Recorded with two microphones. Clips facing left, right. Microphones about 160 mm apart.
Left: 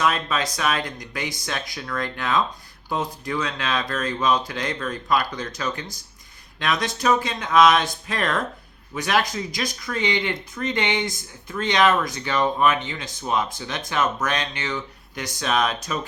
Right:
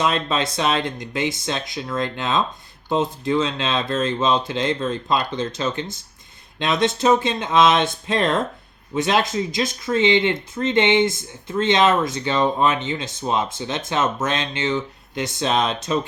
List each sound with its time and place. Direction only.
0.0 s speech: 25° right (ahead or behind)